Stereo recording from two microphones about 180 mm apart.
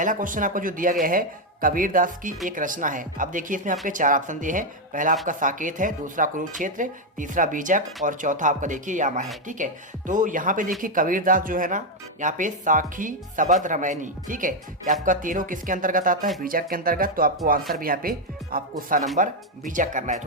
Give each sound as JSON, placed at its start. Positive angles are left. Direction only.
{"t": 0.0, "sound": "speech", "side_deg": -45}